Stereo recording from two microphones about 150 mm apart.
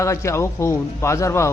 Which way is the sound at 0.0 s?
20° left (ahead or behind).